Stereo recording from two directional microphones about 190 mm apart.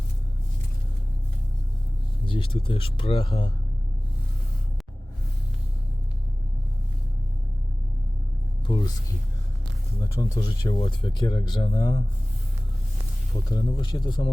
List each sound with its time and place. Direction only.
2.2 s speech: 25° left (ahead or behind)
8.7 s a sound: 25° left (ahead or behind)
10.0 s speech: 15° left (ahead or behind)
10.7 s speech: 25° left (ahead or behind)
13.3 s speech: 20° left (ahead or behind)